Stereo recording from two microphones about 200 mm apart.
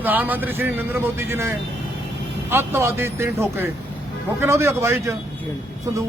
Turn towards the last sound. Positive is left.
turn(degrees=-15)  # may be behind; listen again after turning